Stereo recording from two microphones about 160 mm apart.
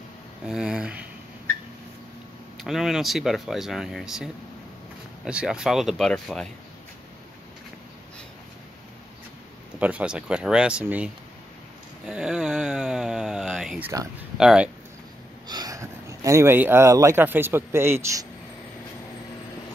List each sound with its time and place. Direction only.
0.5 s speech: 5° right (ahead or behind)
2.5 s speech: centre (ahead or behind)
9.8 s speech: 10° right (ahead or behind)
12.1 s speech: 5° right (ahead or behind)
15.4 s speech: 25° right (ahead or behind)